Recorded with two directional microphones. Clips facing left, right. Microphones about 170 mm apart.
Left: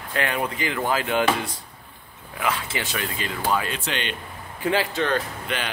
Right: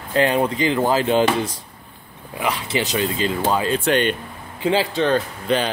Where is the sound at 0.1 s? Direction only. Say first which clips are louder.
Right 8 dB; 30° right (ahead or behind).